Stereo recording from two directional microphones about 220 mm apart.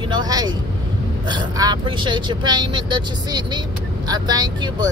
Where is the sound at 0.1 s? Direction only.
20° right (ahead or behind).